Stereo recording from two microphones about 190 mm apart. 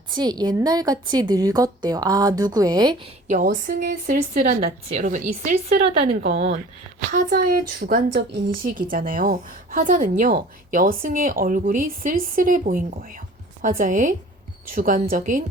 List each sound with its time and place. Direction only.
0.1 s a woman's voice: 20° right (ahead or behind)
3.2 s a woman's voice: 45° right (ahead or behind)